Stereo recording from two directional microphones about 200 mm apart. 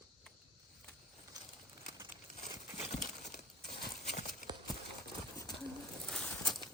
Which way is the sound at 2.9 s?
35° left (ahead or behind).